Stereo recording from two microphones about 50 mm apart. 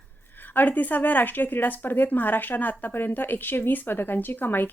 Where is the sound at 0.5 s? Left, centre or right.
Left.